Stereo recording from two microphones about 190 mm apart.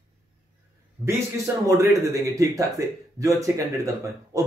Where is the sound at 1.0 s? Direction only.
15° right (ahead or behind).